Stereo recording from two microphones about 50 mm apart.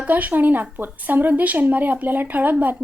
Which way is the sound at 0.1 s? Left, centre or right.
Right.